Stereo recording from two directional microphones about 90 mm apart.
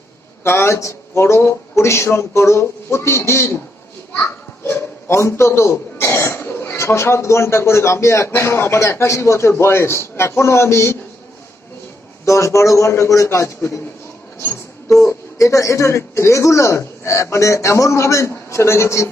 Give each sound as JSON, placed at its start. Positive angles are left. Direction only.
{"t": 0.4, "sound": "speech", "side_deg": 30}
{"t": 4.6, "sound": "speech", "side_deg": 30}
{"t": 12.2, "sound": "speech", "side_deg": 35}
{"t": 14.8, "sound": "speech", "side_deg": 35}